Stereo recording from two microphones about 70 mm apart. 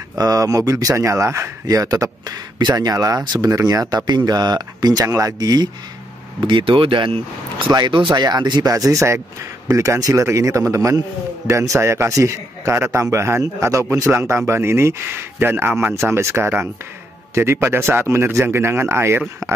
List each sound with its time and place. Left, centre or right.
0.2 s speech: right
4.1 s speech: right
5.0 s a man's voice: right
5.4 s speech: right
7.7 s speech: right
8.7 s a man's voice: right
12.7 s speech: right